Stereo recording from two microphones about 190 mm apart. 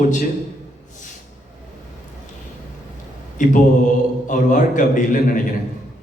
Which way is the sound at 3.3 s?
45° left (ahead or behind).